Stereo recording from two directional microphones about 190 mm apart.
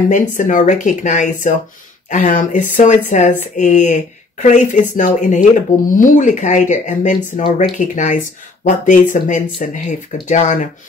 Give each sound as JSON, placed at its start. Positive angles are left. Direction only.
{"t": 0.1, "sound": "speech", "side_deg": 45}